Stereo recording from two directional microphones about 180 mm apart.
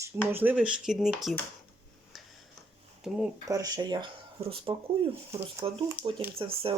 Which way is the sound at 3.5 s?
20° right (ahead or behind).